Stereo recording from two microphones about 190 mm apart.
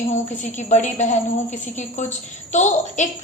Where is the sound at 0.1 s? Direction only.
40° left (ahead or behind).